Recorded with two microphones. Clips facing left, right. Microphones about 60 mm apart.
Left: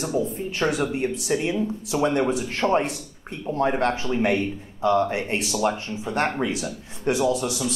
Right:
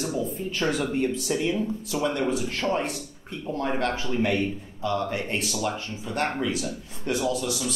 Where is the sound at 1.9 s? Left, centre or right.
Left.